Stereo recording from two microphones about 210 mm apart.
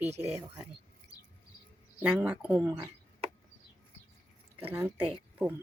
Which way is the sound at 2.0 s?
5° right (ahead or behind).